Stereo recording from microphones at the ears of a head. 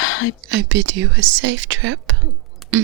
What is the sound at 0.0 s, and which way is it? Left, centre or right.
Whispering, left.